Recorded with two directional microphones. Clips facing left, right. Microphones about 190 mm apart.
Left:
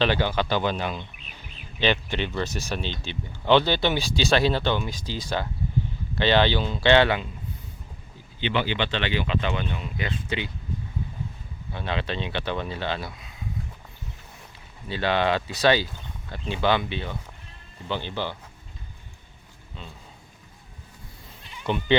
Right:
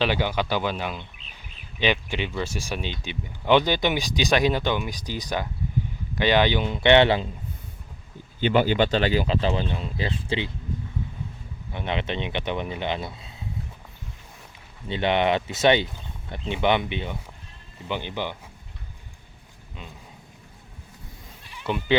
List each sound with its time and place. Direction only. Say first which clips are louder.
0.0 s speech: left 1 dB; 10° right (ahead or behind)
8.4 s speech: right 6 dB; 45° right (ahead or behind); by 10.5 s 25° right (ahead or behind)
11.7 s speech: right 1 dB; 20° right (ahead or behind)
14.8 s speech: right 2 dB; 20° right (ahead or behind)
21.7 s speech: left 1 dB; 5° right (ahead or behind)